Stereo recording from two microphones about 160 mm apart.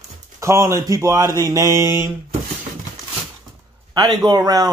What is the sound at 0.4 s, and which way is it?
Speech, 20° right (ahead or behind).